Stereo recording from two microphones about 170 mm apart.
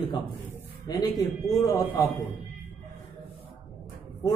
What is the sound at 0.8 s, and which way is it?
A woman's voice, 25° left (ahead or behind).